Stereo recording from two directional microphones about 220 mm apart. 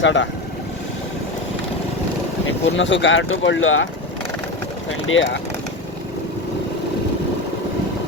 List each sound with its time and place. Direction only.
0.0 s speech: 55° left (ahead or behind)
2.7 s speech: 55° left (ahead or behind)
5.0 s speech: 60° left (ahead or behind)